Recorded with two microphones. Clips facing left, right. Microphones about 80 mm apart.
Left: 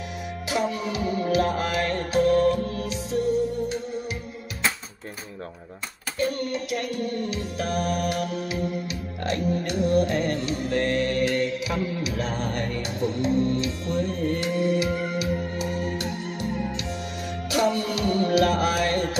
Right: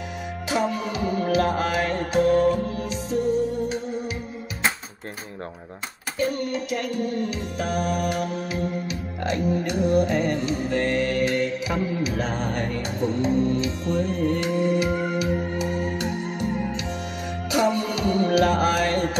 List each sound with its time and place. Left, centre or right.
0.5 s music: centre
1.0 s music: right
1.3 s music: centre
6.1 s music: centre
11.6 s music: right
12.3 s music: centre
14.0 s music: right
17.6 s music: right